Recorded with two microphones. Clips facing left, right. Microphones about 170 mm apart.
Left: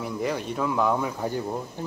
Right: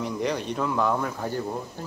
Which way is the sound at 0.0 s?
5° left (ahead or behind).